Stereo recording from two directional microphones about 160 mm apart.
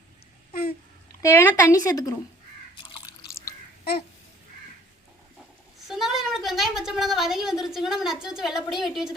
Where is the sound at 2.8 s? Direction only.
30° left (ahead or behind).